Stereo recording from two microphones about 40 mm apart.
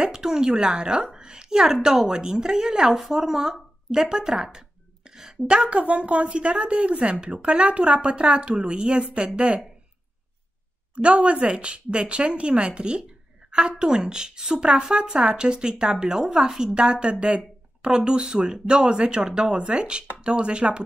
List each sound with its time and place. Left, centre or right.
0.0 s a woman's voice: centre
5.5 s a woman's voice: right
11.0 s a woman's voice: right